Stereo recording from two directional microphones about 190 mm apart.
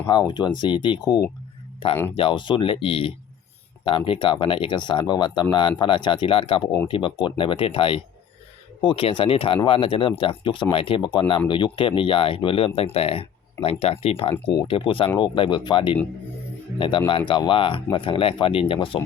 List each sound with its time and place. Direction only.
0.1 s speech: 20° left (ahead or behind)
17.1 s speech: 25° left (ahead or behind)